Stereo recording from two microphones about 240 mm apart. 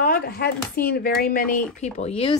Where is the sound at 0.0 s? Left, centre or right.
Left.